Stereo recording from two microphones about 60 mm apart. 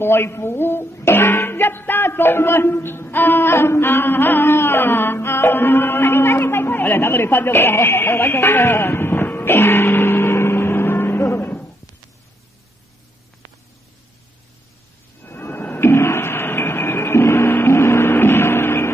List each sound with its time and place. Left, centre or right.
0.0 s speech: left
15.2 s a sound: left
15.7 s music: left